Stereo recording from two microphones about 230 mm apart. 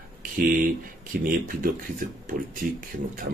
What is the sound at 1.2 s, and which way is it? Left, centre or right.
Speech, right.